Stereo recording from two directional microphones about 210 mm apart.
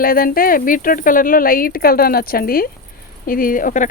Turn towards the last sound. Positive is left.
turn(degrees=40)  # may be behind; listen again after turning